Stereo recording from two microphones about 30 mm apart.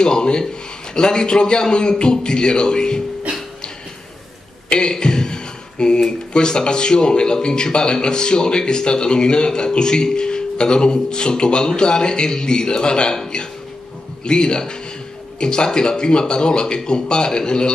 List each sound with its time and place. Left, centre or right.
0.0 s speech: left
4.6 s a sound: left
6.3 s speech: left
14.2 s speech: left